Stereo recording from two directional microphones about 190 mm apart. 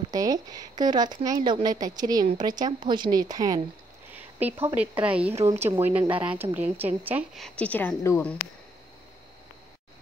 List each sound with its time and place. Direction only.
0.1 s a woman's voice: 20° right (ahead or behind)
4.1 s a sound: 10° right (ahead or behind)
5.0 s a woman's voice: 5° right (ahead or behind); by 8.4 s 10° left (ahead or behind)